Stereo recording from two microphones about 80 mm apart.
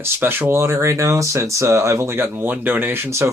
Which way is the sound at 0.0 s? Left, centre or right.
Right.